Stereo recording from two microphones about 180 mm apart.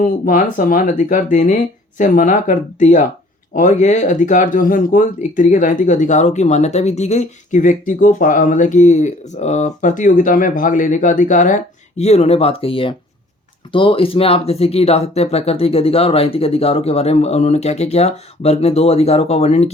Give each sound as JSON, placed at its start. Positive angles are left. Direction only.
{"t": 0.0, "sound": "speech", "side_deg": 50}